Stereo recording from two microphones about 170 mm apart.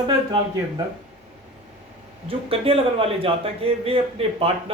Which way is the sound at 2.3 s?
35° right (ahead or behind).